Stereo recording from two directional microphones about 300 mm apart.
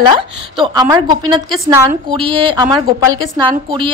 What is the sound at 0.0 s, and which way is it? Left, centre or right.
A woman's voice, centre.